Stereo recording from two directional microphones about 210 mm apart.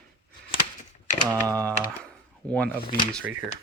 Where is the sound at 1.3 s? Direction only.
15° right (ahead or behind).